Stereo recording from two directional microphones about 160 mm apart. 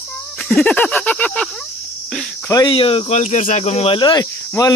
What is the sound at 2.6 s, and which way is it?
Speech, 35° left (ahead or behind).